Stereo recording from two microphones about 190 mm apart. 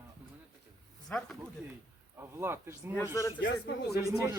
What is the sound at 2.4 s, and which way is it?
Speech, 15° right (ahead or behind).